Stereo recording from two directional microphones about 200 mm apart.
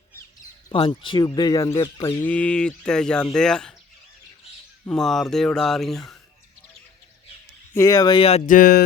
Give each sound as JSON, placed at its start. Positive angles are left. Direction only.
{"t": 0.7, "sound": "speech", "side_deg": 25}
{"t": 4.9, "sound": "speech", "side_deg": 0}
{"t": 7.7, "sound": "speech", "side_deg": 15}